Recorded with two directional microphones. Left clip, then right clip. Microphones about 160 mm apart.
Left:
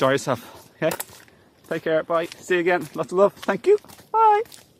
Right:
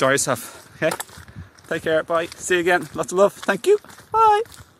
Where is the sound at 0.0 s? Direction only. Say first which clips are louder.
Right 2 dB; centre (ahead or behind); by 4.5 s 20° right (ahead or behind).